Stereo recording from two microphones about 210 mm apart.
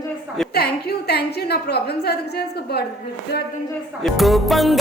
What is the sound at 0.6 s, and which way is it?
A woman's voice, 50° left (ahead or behind).